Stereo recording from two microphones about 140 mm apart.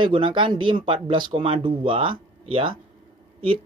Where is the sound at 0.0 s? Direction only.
35° right (ahead or behind).